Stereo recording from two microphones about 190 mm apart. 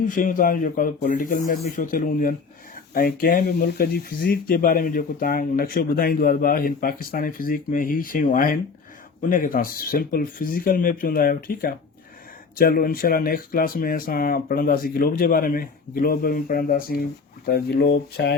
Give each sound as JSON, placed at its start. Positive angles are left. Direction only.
{"t": 0.0, "sound": "speech", "side_deg": 45}